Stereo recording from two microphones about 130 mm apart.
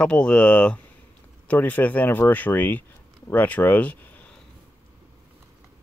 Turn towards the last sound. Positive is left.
turn(degrees=10)  # may be behind; listen again after turning